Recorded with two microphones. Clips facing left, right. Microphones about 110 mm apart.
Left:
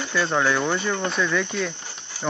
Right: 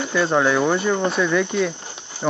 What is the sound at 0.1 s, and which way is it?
Speech, 5° right (ahead or behind).